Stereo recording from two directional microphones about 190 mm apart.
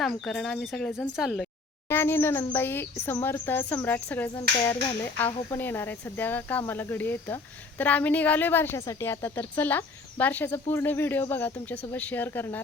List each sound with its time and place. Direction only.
0.0 s speech: centre (ahead or behind)
1.9 s speech: 10° left (ahead or behind)